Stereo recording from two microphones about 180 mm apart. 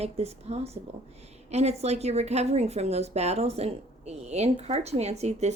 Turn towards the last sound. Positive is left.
turn(degrees=-40)  # may be behind; listen again after turning